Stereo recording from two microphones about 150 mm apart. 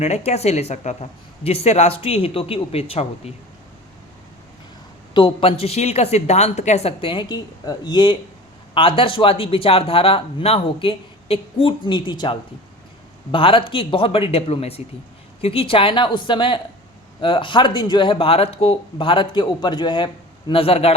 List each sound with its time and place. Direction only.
0.0 s speech: 45° left (ahead or behind)
5.1 s speech: 35° left (ahead or behind)